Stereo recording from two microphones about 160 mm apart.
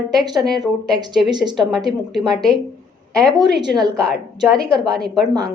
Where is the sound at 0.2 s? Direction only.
5° left (ahead or behind).